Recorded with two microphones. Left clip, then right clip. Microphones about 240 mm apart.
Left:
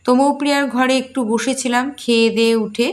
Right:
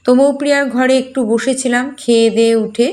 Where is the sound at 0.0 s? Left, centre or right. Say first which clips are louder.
Right 4 dB; centre.